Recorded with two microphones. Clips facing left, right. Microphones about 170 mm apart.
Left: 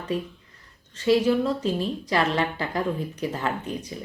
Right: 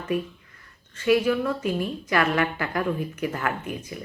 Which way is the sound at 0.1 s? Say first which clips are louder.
Right 2 dB; 15° right (ahead or behind).